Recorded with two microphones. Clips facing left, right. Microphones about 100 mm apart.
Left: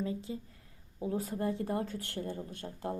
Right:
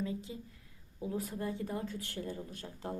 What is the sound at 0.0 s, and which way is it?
Speech, 35° left (ahead or behind).